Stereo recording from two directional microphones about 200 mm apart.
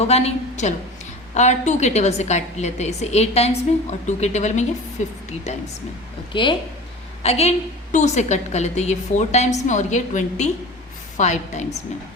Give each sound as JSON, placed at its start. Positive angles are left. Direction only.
{"t": 0.0, "sound": "a woman's voice", "side_deg": 30}
{"t": 6.3, "sound": "a woman's voice", "side_deg": 25}